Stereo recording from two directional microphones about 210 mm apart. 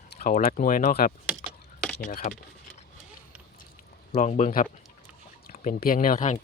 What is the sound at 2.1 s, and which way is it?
Speech, 40° left (ahead or behind).